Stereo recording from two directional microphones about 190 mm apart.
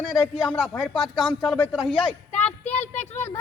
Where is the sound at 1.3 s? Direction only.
Centre (ahead or behind).